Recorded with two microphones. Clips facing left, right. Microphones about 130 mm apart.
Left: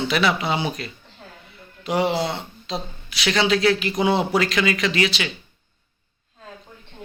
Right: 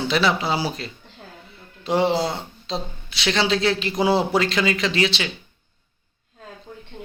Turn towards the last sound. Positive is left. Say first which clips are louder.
# even
turn(degrees=-30)  # may be behind; listen again after turning